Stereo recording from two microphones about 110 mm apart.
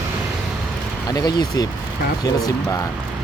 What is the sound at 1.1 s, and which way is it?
Speech, 35° left (ahead or behind).